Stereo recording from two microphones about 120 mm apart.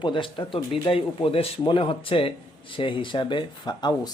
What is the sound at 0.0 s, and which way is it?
Speech, 40° left (ahead or behind).